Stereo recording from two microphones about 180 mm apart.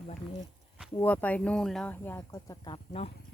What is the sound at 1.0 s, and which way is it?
Speech, 10° left (ahead or behind).